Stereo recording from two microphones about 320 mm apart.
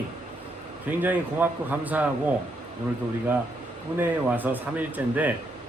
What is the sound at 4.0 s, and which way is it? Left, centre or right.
Speech, centre.